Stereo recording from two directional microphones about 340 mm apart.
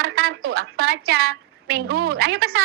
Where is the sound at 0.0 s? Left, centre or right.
Right.